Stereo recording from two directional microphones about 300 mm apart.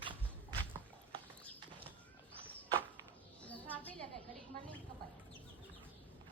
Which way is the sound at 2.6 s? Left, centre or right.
Centre.